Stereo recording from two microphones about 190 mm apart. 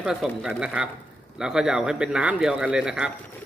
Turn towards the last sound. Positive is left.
turn(degrees=-5)  # may be behind; listen again after turning